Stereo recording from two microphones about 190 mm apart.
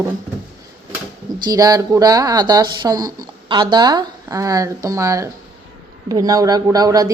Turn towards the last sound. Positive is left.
turn(degrees=-20)  # may be behind; listen again after turning